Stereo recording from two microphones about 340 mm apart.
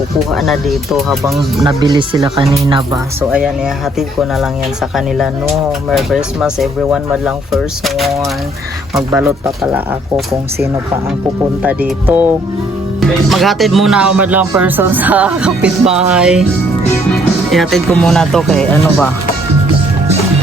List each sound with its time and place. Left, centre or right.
0.3 s speech: centre
1.6 s speech: centre
4.9 s speech: centre
11.6 s speech: centre